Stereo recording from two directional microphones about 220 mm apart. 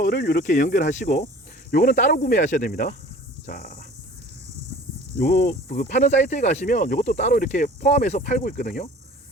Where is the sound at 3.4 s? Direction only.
40° left (ahead or behind).